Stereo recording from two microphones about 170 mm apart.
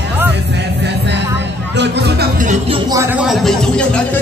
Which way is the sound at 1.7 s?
90° right.